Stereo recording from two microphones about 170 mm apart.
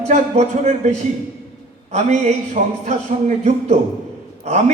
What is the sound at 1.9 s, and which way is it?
Speech, 45° right (ahead or behind).